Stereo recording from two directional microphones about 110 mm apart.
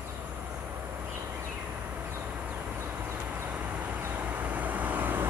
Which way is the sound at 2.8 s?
25° right (ahead or behind).